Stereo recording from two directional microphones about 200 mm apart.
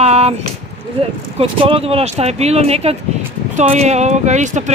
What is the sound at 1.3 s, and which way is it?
Speech, 30° right (ahead or behind).